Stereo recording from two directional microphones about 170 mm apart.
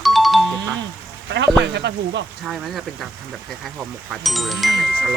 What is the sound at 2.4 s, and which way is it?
Speech, centre (ahead or behind).